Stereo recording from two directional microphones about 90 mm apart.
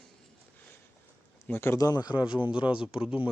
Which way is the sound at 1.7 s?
45° left (ahead or behind).